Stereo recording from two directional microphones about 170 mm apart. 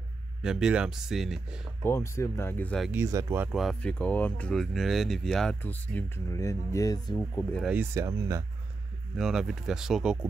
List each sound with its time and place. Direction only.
0.4 s speech: 5° right (ahead or behind)
1.8 s speech: 15° left (ahead or behind)
2.9 s speech: 15° right (ahead or behind)
3.5 s speech: 5° left (ahead or behind); by 7.4 s 20° left (ahead or behind)
7.6 s speech: 10° right (ahead or behind)
9.1 s speech: centre (ahead or behind)